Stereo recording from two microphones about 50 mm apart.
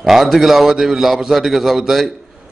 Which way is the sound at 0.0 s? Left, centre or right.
Centre.